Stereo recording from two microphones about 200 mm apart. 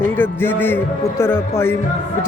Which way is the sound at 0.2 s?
10° left (ahead or behind).